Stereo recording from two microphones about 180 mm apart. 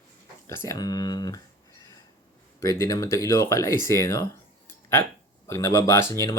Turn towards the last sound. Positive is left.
turn(degrees=15)  # may be behind; listen again after turning